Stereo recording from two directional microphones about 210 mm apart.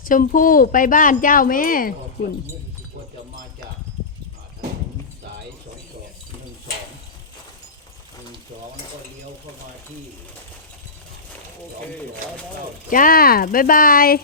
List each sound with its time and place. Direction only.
0.0 s speech: 40° left (ahead or behind)
12.9 s speech: 40° left (ahead or behind)